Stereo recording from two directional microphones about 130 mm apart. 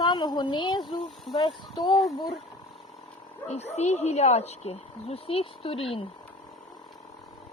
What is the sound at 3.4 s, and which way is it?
Speech, 55° left (ahead or behind).